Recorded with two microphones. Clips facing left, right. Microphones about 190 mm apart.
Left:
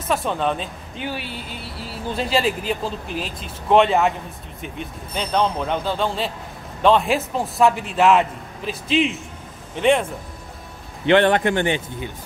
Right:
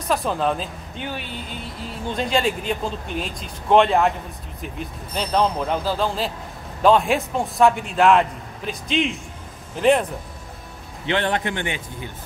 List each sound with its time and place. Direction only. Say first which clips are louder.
0.1 s speech: even; centre (ahead or behind)
11.1 s a man's voice: left 7 dB; 60° left (ahead or behind)
11.5 s speech: left 7 dB; 35° left (ahead or behind)